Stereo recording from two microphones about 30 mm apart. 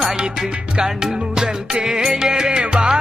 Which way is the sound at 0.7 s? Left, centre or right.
Right.